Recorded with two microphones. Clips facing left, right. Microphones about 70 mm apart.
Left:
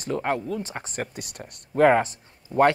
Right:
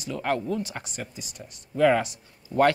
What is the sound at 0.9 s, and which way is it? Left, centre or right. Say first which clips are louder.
Speech: left 5 dB; left.